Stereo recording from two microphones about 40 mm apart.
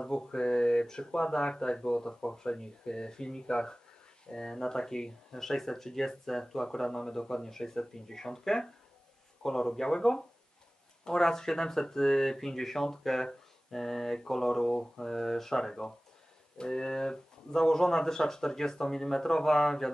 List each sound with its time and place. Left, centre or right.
0.0 s speech: centre